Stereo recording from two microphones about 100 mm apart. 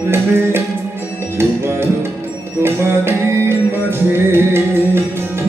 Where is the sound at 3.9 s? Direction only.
25° right (ahead or behind).